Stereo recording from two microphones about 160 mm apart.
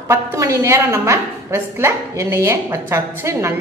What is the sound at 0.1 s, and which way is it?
A woman's voice, 20° right (ahead or behind).